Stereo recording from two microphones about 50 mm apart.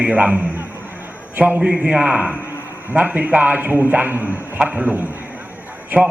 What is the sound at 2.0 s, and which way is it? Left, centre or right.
A man's voice, right.